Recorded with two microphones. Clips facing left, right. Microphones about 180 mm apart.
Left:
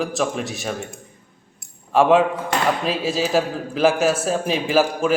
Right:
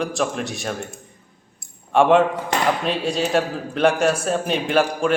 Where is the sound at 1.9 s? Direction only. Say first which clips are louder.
Even; centre (ahead or behind).